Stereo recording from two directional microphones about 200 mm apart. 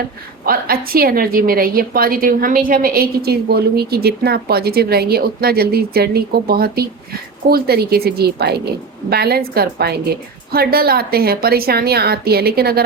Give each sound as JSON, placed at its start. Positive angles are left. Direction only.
{"t": 0.4, "sound": "a woman's voice", "side_deg": -45}